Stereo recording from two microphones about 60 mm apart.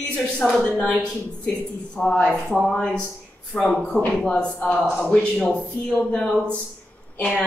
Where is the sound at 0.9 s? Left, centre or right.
Centre.